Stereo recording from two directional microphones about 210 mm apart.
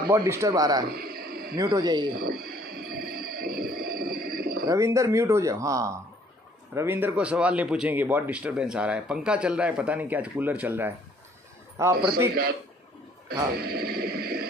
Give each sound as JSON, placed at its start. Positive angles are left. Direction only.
{"t": 0.1, "sound": "speech", "side_deg": -15}
{"t": 0.8, "sound": "a sound", "side_deg": -45}
{"t": 1.6, "sound": "speech", "side_deg": -20}
{"t": 2.1, "sound": "music", "side_deg": -45}
{"t": 4.6, "sound": "speech", "side_deg": -15}
{"t": 13.3, "sound": "speech", "side_deg": -45}